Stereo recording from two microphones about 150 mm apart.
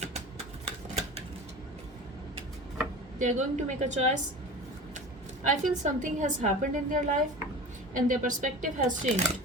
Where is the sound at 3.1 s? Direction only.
55° right (ahead or behind).